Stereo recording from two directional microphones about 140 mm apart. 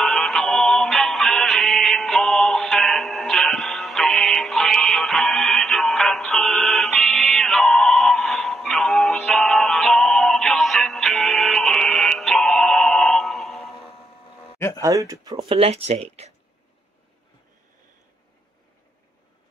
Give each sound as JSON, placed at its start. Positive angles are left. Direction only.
{"t": 0.0, "sound": "music", "side_deg": 0}
{"t": 14.8, "sound": "speech", "side_deg": -25}
{"t": 15.4, "sound": "speech", "side_deg": -45}